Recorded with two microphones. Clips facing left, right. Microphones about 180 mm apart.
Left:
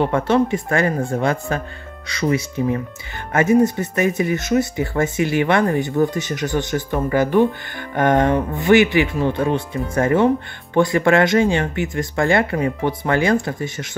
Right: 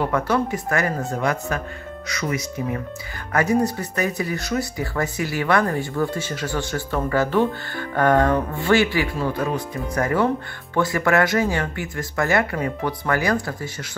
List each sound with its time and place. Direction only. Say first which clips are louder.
0.0 s speech: left 4 dB; 25° left (ahead or behind)